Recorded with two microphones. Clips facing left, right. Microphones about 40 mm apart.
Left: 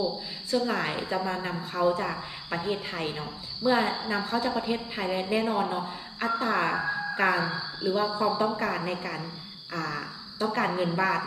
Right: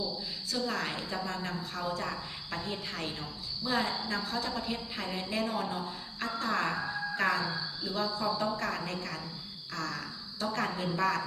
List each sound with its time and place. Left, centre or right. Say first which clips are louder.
0.5 s a woman's voice: left 7 dB; left